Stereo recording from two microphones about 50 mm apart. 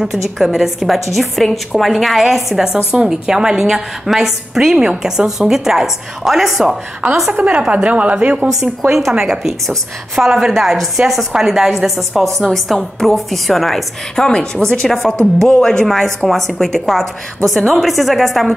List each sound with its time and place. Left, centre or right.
0.0 s a woman's voice: centre
7.0 s a woman's voice: right
7.3 s a woman's voice: right
9.2 s a woman's voice: centre
14.1 s a woman's voice: centre